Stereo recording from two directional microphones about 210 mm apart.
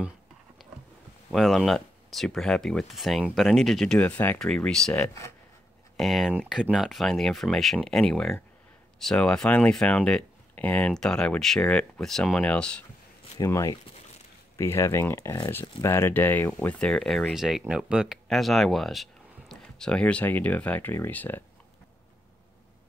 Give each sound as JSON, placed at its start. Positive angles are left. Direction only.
{"t": 1.3, "sound": "speech", "side_deg": 0}